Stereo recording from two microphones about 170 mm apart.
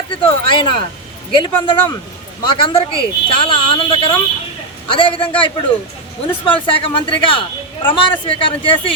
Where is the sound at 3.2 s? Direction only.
30° left (ahead or behind).